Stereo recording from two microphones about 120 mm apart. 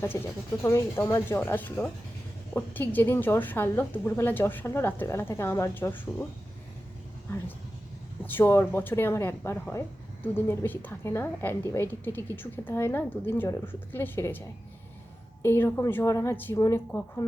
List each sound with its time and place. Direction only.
0.1 s a woman's voice: 25° left (ahead or behind)
8.2 s a woman's voice: 15° left (ahead or behind)